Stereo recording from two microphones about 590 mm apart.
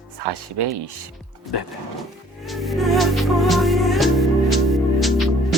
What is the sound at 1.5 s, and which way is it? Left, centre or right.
Speech, left.